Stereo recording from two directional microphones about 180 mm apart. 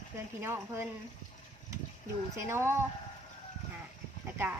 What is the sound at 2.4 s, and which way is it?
Speech, 15° right (ahead or behind).